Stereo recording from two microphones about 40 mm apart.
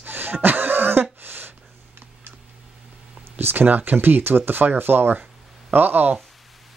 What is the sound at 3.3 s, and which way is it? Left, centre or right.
Speech, right.